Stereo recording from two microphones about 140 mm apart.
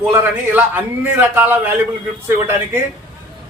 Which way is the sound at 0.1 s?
15° right (ahead or behind).